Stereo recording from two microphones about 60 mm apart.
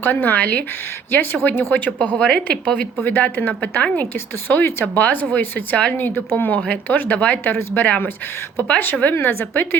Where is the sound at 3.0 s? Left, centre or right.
Left.